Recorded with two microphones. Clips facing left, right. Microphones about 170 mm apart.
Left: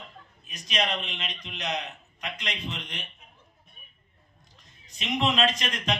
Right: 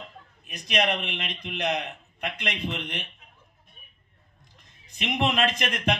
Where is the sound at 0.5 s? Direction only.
60° right (ahead or behind).